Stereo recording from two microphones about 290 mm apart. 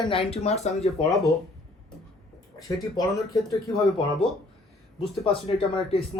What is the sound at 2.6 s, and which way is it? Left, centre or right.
Speech, centre.